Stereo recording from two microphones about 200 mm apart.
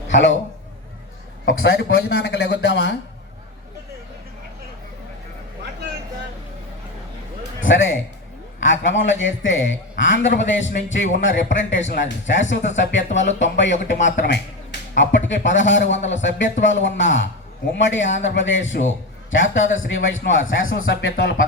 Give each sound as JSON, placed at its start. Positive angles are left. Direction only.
{"t": 0.1, "sound": "a man's voice", "side_deg": 65}
{"t": 1.5, "sound": "speech", "side_deg": 55}
{"t": 7.6, "sound": "a man's voice", "side_deg": 75}